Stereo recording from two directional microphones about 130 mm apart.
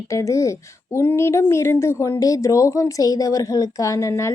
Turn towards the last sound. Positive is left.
turn(degrees=20)  # may be behind; listen again after turning